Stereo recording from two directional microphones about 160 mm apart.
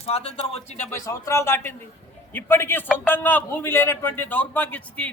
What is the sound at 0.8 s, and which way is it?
A man's voice, 15° left (ahead or behind).